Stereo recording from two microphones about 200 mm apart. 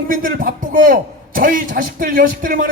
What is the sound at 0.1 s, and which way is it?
A man's voice, 45° right (ahead or behind).